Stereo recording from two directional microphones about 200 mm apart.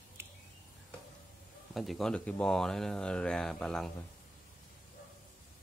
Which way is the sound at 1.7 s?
Centre (ahead or behind).